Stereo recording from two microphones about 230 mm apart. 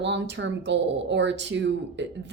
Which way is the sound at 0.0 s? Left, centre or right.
Right.